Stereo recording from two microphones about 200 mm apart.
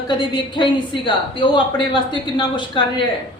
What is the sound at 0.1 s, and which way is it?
A woman's voice, 25° left (ahead or behind).